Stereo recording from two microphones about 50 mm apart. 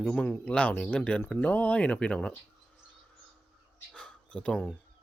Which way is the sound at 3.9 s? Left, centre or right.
Centre.